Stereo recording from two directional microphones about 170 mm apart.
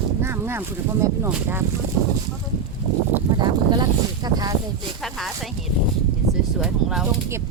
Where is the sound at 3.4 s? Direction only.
25° right (ahead or behind).